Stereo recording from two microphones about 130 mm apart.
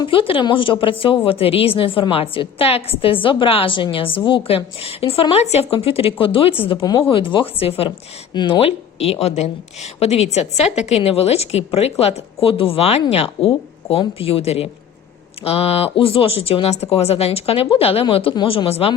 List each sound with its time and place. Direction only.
0.0 s a woman's voice: 40° left (ahead or behind)
6.8 s speech: 30° left (ahead or behind)
7.1 s a woman's voice: 40° left (ahead or behind)